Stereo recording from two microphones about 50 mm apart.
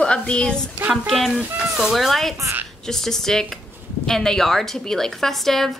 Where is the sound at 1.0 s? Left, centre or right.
Centre.